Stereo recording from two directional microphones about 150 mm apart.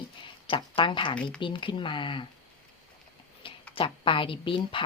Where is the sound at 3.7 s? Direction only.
35° left (ahead or behind).